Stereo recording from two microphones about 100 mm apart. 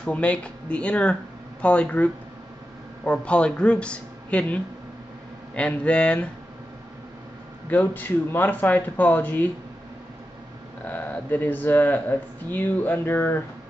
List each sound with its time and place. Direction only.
0.0 s speech: 10° left (ahead or behind)
7.7 s speech: 20° left (ahead or behind)
10.9 s speech: 15° left (ahead or behind)